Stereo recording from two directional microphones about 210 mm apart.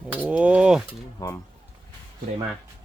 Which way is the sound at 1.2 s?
15° left (ahead or behind).